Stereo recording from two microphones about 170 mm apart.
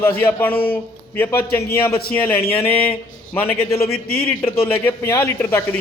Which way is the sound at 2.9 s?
10° left (ahead or behind).